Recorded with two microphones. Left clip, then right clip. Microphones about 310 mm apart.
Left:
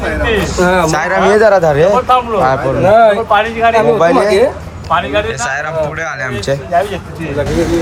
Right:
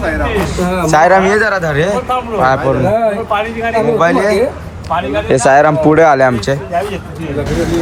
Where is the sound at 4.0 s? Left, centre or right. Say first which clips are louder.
Left 2 dB; centre.